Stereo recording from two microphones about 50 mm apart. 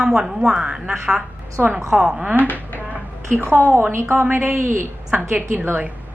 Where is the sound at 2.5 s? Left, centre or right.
Left.